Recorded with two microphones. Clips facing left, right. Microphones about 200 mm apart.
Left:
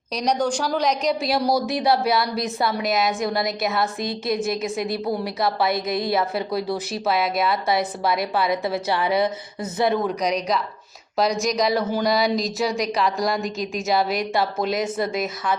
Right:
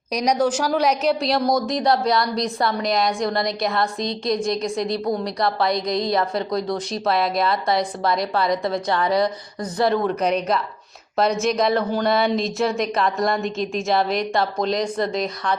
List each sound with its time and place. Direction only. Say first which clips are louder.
0.1 s a woman's voice: right 2 dB; 10° right (ahead or behind)
9.7 s speech: right 1 dB; 20° left (ahead or behind)
10.0 s a woman's voice: right 2 dB; centre (ahead or behind)